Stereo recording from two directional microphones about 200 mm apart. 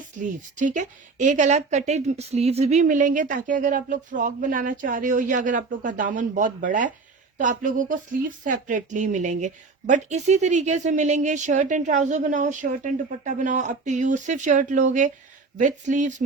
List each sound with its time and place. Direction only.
0.2 s a woman's voice: 40° right (ahead or behind)